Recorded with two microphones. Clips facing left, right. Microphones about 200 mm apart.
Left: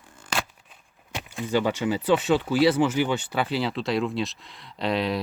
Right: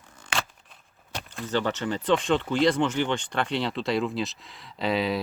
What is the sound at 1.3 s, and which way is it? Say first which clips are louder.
Speech: left 3 dB; 10° left (ahead or behind).